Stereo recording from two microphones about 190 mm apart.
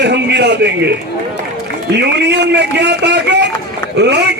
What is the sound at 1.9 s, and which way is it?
A man's voice, 60° right (ahead or behind).